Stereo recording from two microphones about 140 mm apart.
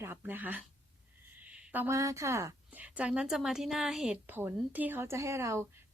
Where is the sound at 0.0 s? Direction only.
15° right (ahead or behind).